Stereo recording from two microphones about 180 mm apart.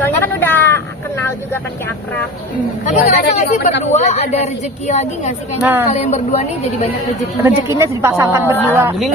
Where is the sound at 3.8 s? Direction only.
40° left (ahead or behind).